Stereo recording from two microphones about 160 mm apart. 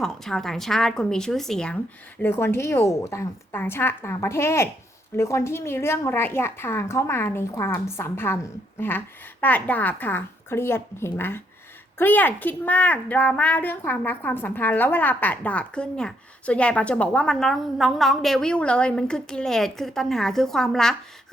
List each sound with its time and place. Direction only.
0.0 s a woman's voice: 5° left (ahead or behind)